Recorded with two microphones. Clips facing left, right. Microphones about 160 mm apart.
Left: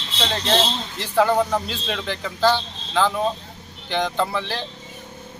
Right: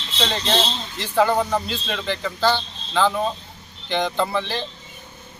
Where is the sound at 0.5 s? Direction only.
Centre (ahead or behind).